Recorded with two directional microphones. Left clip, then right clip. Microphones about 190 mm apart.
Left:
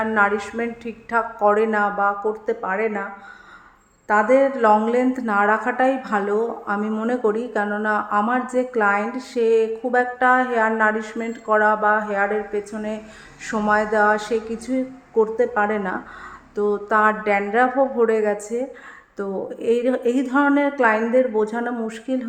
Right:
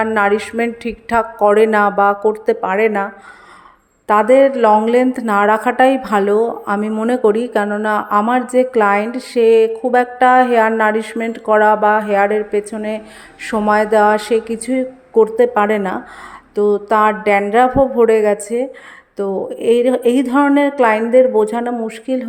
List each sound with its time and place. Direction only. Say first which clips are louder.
0.0 s a woman's voice: right 5 dB; 40° right (ahead or behind)